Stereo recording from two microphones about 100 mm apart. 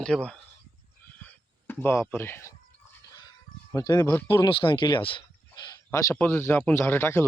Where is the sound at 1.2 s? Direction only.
20° left (ahead or behind).